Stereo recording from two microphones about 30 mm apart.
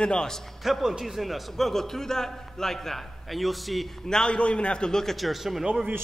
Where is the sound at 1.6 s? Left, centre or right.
Centre.